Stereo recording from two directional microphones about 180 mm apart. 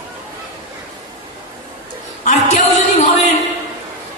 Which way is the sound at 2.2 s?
40° left (ahead or behind).